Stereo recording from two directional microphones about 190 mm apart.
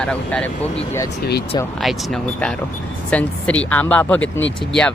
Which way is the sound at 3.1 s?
5° left (ahead or behind).